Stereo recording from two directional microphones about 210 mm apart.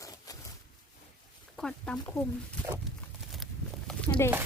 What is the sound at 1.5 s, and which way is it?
Speech, 5° left (ahead or behind).